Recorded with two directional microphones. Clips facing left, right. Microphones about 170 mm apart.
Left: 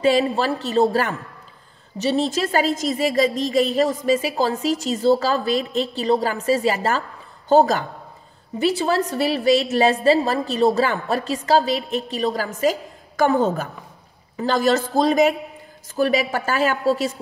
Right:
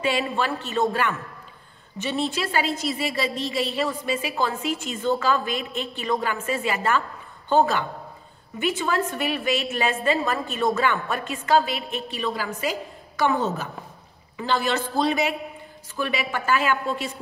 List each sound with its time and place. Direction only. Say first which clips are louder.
0.0 s a woman's voice: left 6 dB; 35° left (ahead or behind)